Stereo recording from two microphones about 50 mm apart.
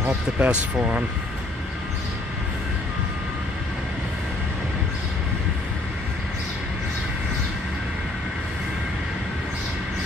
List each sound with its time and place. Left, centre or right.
0.4 s speech: right